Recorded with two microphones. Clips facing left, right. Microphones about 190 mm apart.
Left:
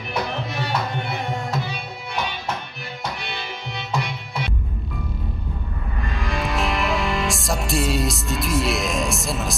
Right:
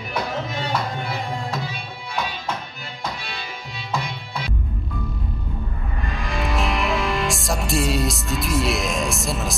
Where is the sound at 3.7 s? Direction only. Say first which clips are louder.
Left 1 dB; 70° left (ahead or behind).